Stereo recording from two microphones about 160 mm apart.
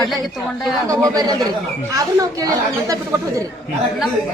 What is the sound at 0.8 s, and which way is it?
A woman's voice, 25° right (ahead or behind).